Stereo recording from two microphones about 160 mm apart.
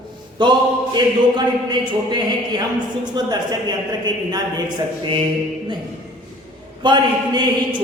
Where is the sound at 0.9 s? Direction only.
25° right (ahead or behind).